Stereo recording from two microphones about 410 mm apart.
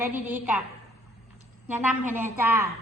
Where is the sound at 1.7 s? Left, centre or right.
Centre.